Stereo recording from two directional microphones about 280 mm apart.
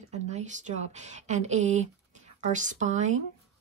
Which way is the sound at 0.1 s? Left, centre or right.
Right.